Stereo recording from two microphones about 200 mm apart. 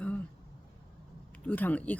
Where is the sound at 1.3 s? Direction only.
5° left (ahead or behind).